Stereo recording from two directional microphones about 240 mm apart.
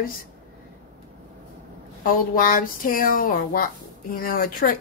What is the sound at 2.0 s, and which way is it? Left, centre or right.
Speech, left.